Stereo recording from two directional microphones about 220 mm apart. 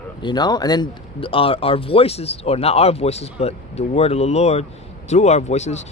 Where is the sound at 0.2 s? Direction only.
20° left (ahead or behind).